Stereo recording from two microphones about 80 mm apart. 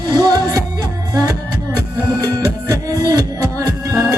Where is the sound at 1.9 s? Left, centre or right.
Right.